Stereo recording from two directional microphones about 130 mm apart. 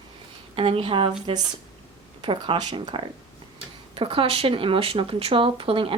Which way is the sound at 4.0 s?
45° right (ahead or behind).